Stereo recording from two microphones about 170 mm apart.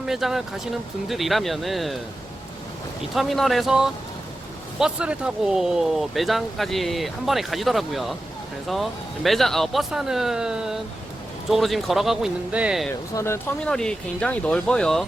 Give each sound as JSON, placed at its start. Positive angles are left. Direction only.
{"t": 0.0, "sound": "speech", "side_deg": 0}
{"t": 3.2, "sound": "speech", "side_deg": 0}
{"t": 13.1, "sound": "speech", "side_deg": 15}
{"t": 13.7, "sound": "speech", "side_deg": 5}